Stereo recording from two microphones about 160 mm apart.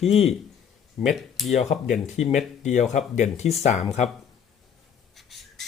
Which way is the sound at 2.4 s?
45° left (ahead or behind).